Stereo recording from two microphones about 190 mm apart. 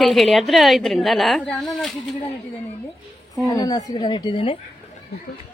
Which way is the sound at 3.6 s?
20° left (ahead or behind).